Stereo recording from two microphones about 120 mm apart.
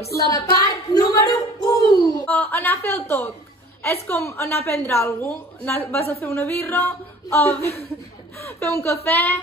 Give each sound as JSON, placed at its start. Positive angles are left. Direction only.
{"t": 0.2, "sound": "speech", "side_deg": 30}
{"t": 2.2, "sound": "a woman's voice", "side_deg": 15}
{"t": 8.8, "sound": "a woman's voice", "side_deg": 20}